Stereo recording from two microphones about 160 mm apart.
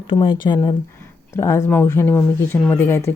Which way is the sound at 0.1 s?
30° left (ahead or behind).